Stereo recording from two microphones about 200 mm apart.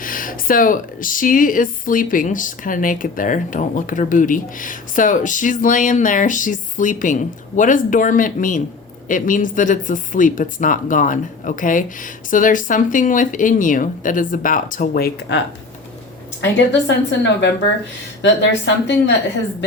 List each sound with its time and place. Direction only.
0.0 s speech: 45° left (ahead or behind)
16.4 s a woman's voice: 60° left (ahead or behind)